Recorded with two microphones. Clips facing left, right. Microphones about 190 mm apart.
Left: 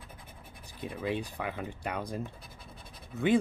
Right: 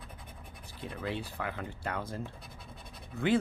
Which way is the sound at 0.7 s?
15° left (ahead or behind).